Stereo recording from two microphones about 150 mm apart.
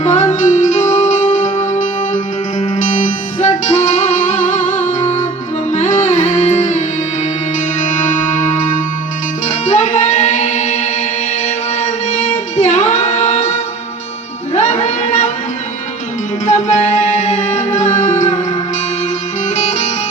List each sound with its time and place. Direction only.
0.0 s music: 50° left (ahead or behind)
11.4 s singing: 55° left (ahead or behind)
14.5 s a sound: 50° left (ahead or behind)
16.5 s music: 50° left (ahead or behind)
19.5 s music: 50° left (ahead or behind)